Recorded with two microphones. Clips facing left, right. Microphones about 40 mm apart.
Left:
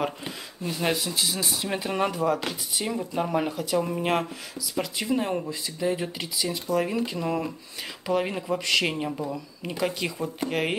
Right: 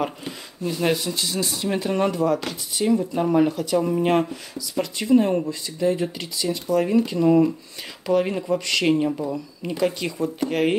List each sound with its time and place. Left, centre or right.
0.7 s speech: centre